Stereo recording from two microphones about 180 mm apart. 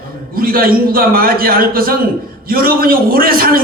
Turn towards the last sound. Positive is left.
turn(degrees=-55)  # may be behind; listen again after turning